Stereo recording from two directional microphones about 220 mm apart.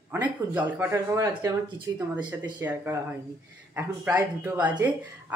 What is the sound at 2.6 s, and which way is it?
Speech, 10° right (ahead or behind).